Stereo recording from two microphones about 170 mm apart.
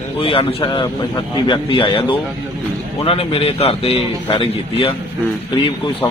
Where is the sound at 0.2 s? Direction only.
30° left (ahead or behind).